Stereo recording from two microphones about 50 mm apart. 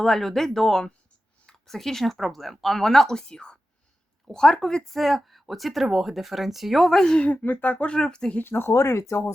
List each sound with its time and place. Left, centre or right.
0.0 s speech: centre
7.3 s speech: left
7.9 s speech: centre
8.4 s speech: left
8.7 s speech: left